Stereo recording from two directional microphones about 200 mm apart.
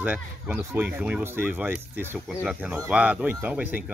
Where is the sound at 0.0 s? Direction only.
10° right (ahead or behind).